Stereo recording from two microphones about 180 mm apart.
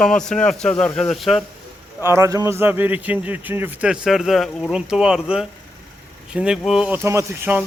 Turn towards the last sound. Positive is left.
turn(degrees=-10)  # may be behind; listen again after turning